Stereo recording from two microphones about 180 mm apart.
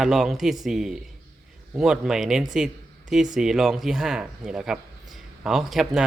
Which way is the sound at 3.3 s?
Centre (ahead or behind).